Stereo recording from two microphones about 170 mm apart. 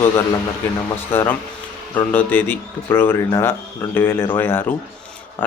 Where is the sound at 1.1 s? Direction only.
15° left (ahead or behind).